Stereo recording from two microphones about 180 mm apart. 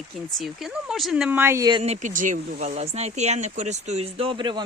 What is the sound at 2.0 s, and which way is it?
Speech, 45° right (ahead or behind).